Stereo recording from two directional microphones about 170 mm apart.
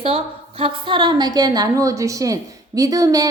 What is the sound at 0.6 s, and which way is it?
A woman's voice, 30° right (ahead or behind).